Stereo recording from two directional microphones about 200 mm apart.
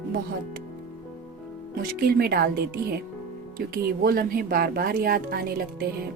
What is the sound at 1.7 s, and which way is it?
Speech, 50° right (ahead or behind).